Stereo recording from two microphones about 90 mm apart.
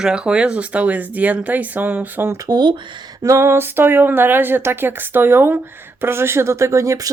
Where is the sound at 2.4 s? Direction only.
50° right (ahead or behind).